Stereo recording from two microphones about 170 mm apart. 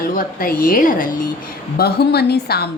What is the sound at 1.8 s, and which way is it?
Speech, 70° left (ahead or behind).